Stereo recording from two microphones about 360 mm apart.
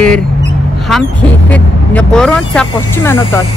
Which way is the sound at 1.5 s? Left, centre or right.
Centre.